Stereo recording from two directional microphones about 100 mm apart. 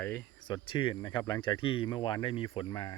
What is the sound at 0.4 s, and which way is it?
Speech, 50° left (ahead or behind).